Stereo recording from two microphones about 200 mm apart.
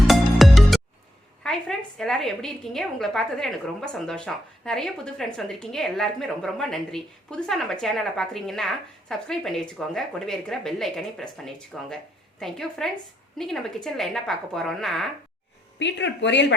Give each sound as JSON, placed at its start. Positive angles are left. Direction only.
{"t": 0.1, "sound": "music", "side_deg": 0}
{"t": 1.5, "sound": "a woman's voice", "side_deg": 0}
{"t": 15.8, "sound": "speech", "side_deg": 60}